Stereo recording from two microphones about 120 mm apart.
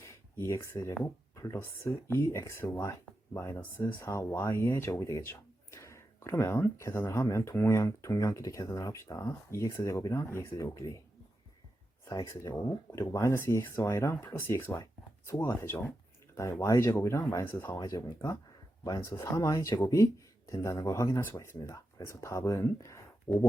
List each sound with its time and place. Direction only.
0.0 s a sound: 20° left (ahead or behind)
1.0 s speech: 25° left (ahead or behind)
12.0 s speech: 25° left (ahead or behind)
17.7 s speech: 30° left (ahead or behind)